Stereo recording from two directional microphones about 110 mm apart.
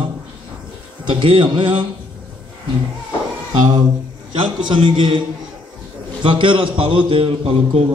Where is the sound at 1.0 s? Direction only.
50° right (ahead or behind).